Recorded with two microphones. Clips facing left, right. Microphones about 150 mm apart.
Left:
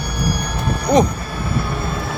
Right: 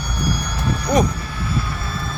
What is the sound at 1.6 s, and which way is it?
Vehicle, 60° left (ahead or behind).